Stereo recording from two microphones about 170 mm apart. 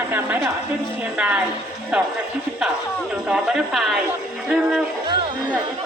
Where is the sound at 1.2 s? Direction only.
10° right (ahead or behind).